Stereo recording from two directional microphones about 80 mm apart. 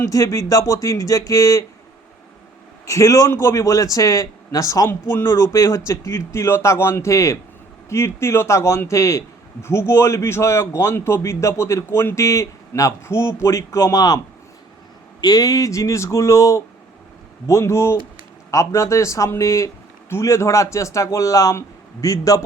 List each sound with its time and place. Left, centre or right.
0.0 s a man's voice: left
2.8 s a man's voice: left
4.9 s a man's voice: left
15.2 s a man's voice: left